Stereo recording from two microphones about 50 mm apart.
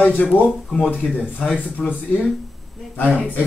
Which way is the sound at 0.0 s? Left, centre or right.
Left.